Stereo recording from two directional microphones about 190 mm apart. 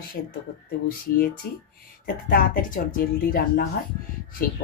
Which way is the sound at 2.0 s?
45° left (ahead or behind).